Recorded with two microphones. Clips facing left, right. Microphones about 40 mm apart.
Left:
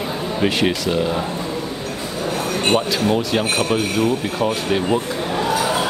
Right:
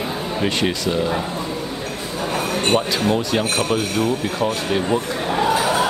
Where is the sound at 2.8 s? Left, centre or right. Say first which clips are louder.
Left 1 dB; centre.